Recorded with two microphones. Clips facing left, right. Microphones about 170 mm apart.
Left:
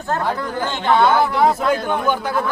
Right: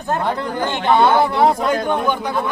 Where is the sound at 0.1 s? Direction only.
20° right (ahead or behind).